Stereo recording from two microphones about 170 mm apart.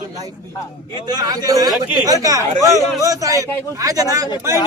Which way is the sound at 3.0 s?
20° right (ahead or behind).